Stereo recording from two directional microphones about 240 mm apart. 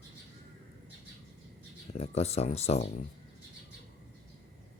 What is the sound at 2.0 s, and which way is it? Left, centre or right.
Speech, left.